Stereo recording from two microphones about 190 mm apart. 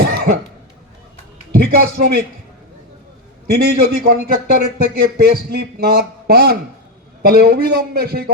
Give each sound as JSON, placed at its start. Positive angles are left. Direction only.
{"t": 0.0, "sound": "cough", "side_deg": -55}
{"t": 1.5, "sound": "speech", "side_deg": -50}
{"t": 3.4, "sound": "a man's voice", "side_deg": -55}